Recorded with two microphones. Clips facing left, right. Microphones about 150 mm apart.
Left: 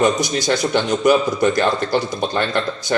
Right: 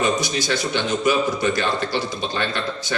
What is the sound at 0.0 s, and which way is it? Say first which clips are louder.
A man's voice: left 4 dB; 50° left (ahead or behind).